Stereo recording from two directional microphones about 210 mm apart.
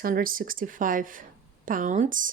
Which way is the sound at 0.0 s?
40° right (ahead or behind).